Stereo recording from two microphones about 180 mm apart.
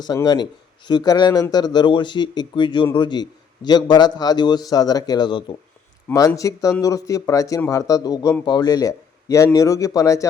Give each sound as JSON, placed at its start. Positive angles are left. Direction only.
{"t": 0.0, "sound": "speech", "side_deg": 25}